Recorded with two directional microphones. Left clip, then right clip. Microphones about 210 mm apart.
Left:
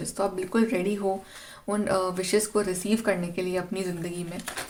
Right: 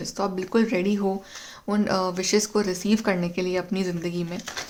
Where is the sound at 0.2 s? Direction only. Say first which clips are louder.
Right 2 dB; 30° right (ahead or behind).